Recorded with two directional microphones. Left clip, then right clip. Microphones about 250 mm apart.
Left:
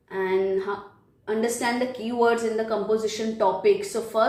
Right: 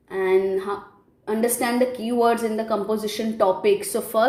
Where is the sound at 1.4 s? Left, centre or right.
Right.